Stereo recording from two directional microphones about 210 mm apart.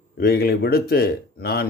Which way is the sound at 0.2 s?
45° left (ahead or behind).